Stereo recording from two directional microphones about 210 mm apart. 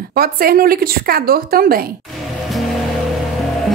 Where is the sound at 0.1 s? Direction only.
45° right (ahead or behind).